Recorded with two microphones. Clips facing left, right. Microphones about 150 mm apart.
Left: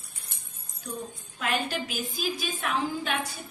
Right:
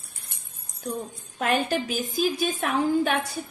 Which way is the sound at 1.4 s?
45° right (ahead or behind).